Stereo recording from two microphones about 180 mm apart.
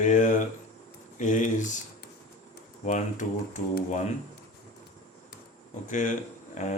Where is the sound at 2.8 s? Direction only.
40° left (ahead or behind).